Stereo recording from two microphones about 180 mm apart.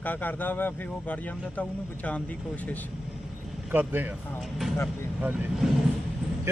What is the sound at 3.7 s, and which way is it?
Speech, 10° right (ahead or behind).